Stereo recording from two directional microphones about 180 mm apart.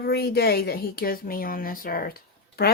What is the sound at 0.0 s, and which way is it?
Speech, 60° left (ahead or behind).